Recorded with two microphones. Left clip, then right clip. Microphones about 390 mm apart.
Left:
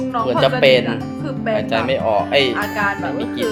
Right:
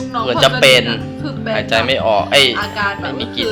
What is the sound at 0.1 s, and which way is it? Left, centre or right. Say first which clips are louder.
Speech: right 3 dB; centre.